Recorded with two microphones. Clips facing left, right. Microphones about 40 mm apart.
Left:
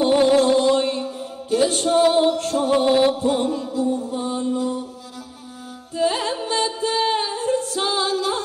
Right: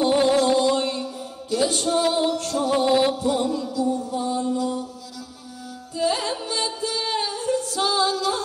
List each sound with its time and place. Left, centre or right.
0.3 s mantra: left
5.9 s music: left